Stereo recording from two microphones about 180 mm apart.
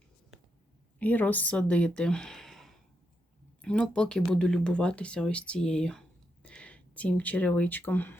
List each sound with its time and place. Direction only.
0.9 s speech: 10° left (ahead or behind)